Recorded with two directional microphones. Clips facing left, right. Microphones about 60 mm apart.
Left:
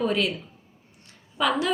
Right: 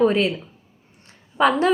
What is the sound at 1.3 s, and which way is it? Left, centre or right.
Speech, right.